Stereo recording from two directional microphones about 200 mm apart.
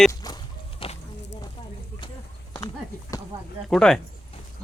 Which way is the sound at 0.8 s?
25° left (ahead or behind).